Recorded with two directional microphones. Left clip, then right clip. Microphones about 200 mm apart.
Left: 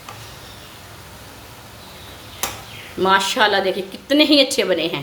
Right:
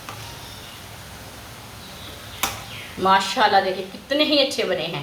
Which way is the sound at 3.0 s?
55° left (ahead or behind).